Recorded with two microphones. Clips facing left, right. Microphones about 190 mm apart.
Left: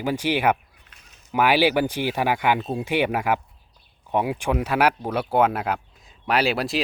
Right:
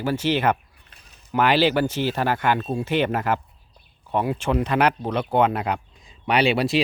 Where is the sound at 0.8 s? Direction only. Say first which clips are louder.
Right 2 dB; 35° right (ahead or behind).